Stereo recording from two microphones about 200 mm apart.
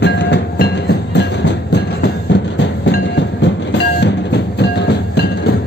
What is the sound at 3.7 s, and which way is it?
Train, 60° left (ahead or behind).